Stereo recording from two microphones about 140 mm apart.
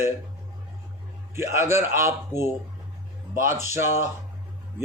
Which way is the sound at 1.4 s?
20° right (ahead or behind).